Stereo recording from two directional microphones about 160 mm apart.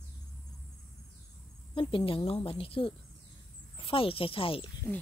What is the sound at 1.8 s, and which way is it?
A woman's voice, 30° left (ahead or behind).